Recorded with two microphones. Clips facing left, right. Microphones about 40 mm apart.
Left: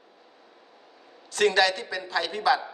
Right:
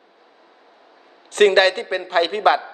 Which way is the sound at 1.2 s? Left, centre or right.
Right.